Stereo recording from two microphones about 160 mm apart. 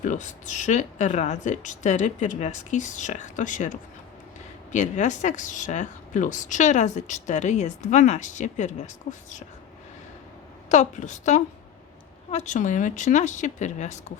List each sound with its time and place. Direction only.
0.0 s speech: 50° left (ahead or behind)
10.7 s speech: 50° left (ahead or behind)